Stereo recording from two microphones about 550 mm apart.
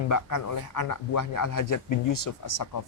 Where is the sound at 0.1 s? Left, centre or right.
Left.